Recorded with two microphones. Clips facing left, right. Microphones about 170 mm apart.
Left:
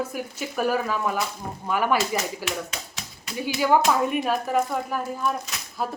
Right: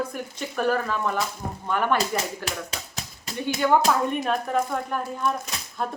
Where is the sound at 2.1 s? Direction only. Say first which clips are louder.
Left 1 dB; 35° right (ahead or behind).